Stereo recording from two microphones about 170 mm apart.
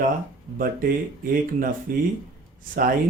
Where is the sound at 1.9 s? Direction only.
55° right (ahead or behind).